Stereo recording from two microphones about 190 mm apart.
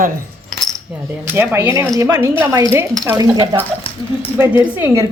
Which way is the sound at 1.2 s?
10° right (ahead or behind).